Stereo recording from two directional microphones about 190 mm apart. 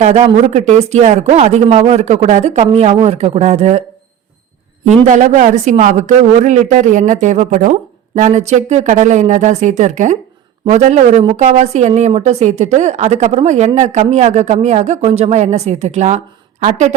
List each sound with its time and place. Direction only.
0.0 s a woman's voice: 35° right (ahead or behind)
4.9 s a woman's voice: 40° right (ahead or behind)